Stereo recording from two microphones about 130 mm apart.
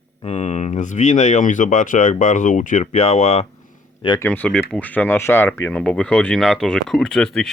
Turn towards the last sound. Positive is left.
turn(degrees=5)  # may be behind; listen again after turning